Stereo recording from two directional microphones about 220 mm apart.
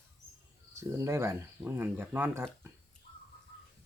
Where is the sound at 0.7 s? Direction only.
15° right (ahead or behind).